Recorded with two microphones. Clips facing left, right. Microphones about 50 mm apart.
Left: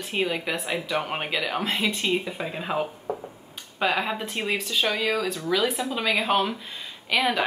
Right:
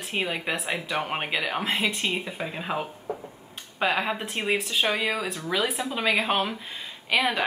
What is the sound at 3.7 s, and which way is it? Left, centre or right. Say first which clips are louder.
Speech: even; centre.